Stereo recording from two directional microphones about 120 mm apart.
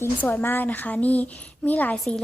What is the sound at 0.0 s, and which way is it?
A woman's voice, 20° left (ahead or behind).